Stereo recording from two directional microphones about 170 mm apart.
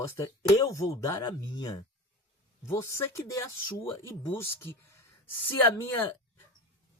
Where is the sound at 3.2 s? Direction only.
20° left (ahead or behind).